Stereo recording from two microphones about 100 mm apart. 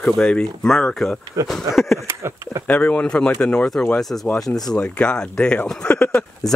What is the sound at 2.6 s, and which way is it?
Speech, 15° left (ahead or behind).